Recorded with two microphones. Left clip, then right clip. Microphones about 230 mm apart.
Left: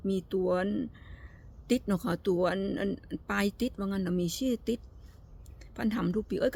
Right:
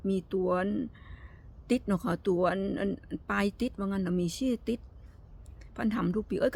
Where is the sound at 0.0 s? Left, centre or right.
Centre.